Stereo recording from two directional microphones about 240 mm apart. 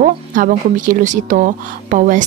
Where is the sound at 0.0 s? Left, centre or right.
Right.